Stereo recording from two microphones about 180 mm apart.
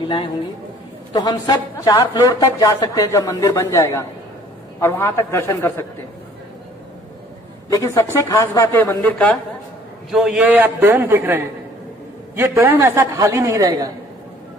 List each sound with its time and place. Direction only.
0.0 s a man's voice: 30° left (ahead or behind)
7.7 s a man's voice: 15° left (ahead or behind)
10.1 s a man's voice: 5° right (ahead or behind); by 13.9 s 20° right (ahead or behind)